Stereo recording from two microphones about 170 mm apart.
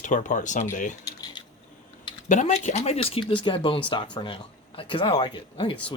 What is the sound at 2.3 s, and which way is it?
Speech, 45° left (ahead or behind).